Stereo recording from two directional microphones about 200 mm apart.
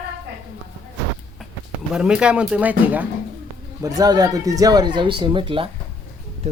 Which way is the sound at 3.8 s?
20° right (ahead or behind).